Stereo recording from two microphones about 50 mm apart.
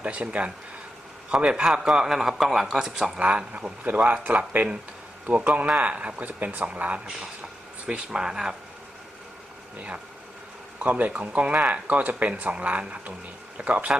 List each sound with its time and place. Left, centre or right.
0.0 s speech: right
1.9 s a man's voice: centre
3.2 s a man's voice: right
10.8 s speech: right